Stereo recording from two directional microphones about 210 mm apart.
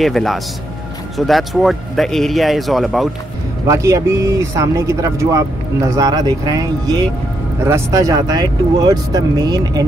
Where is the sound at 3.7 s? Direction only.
15° right (ahead or behind).